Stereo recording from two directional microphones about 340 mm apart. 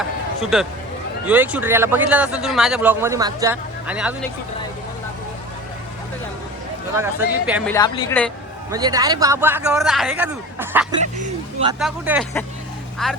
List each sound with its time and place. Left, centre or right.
0.5 s a man's voice: centre
6.9 s a man's voice: centre
7.7 s speech: centre
8.7 s a man's voice: centre
11.0 s a sound: right
11.8 s a man's voice: centre